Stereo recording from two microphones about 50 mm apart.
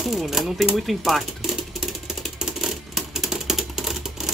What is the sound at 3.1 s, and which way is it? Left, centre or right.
Typewriter, centre.